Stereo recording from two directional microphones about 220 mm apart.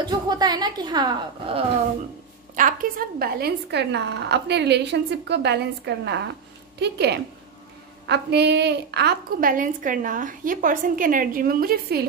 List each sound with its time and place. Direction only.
0.0 s a woman's voice: 20° right (ahead or behind)
2.5 s a woman's voice: 35° right (ahead or behind)